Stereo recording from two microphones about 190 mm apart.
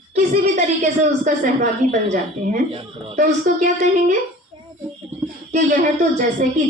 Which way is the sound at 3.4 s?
40° right (ahead or behind).